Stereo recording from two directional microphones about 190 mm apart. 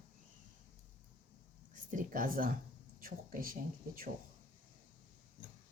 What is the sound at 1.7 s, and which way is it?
Speech, 40° right (ahead or behind).